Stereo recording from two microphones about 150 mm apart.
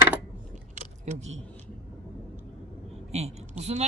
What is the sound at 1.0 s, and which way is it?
Speech, 50° right (ahead or behind).